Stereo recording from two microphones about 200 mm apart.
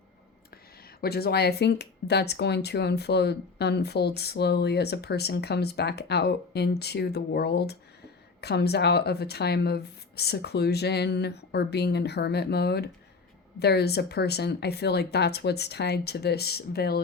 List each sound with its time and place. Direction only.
1.0 s speech: 50° left (ahead or behind)